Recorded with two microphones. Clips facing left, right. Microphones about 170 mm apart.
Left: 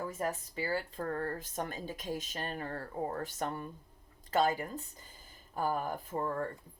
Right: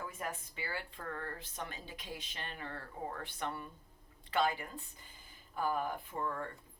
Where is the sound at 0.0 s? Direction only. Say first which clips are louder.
Left 6 dB; 40° left (ahead or behind).